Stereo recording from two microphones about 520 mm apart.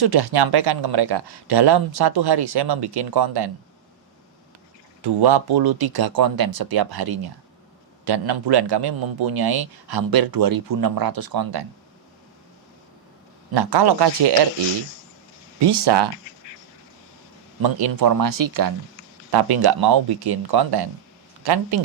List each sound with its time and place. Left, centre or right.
0.0 s a man's voice: right
5.0 s a man's voice: right
13.5 s a man's voice: right
15.6 s a man's voice: right
17.6 s a man's voice: right